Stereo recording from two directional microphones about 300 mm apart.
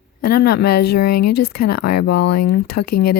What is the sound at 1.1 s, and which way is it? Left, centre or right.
Speech, left.